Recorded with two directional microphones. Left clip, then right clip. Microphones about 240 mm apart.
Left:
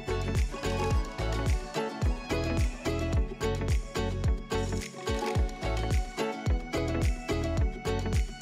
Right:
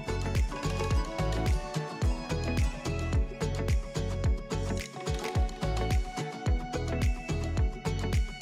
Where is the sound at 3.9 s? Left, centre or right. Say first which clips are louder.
Left 2 dB; centre.